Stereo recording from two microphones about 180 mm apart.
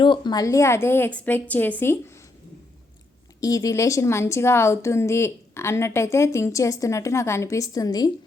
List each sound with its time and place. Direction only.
0.0 s a woman's voice: 25° left (ahead or behind)
3.4 s a woman's voice: 20° left (ahead or behind)